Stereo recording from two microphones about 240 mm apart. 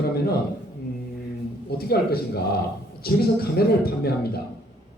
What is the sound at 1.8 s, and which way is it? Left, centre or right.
Speech, left.